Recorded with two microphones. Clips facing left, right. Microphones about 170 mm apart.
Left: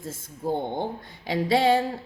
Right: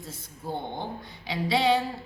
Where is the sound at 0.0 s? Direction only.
45° left (ahead or behind).